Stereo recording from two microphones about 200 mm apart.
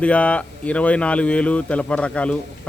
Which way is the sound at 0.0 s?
5° left (ahead or behind).